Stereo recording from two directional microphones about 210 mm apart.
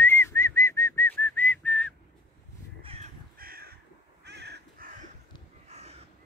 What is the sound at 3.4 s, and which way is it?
Crow, 45° right (ahead or behind).